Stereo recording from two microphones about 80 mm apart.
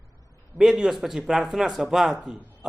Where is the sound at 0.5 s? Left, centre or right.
Centre.